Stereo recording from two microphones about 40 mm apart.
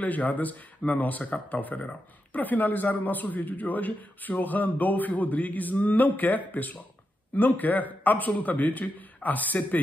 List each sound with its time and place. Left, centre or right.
0.0 s a man's voice: left